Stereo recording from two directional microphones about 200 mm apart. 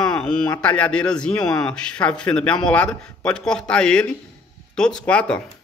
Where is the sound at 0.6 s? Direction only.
5° left (ahead or behind).